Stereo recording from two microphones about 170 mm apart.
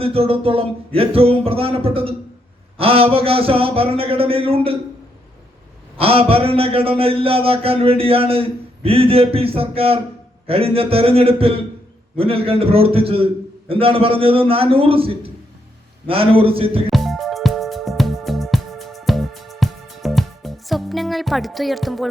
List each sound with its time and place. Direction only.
0.0 s speech: 35° right (ahead or behind)
6.0 s speech: 35° right (ahead or behind)
16.9 s music: centre (ahead or behind)